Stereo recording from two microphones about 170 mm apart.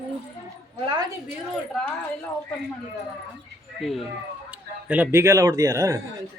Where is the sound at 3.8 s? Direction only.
Centre (ahead or behind); by 6.0 s 20° right (ahead or behind).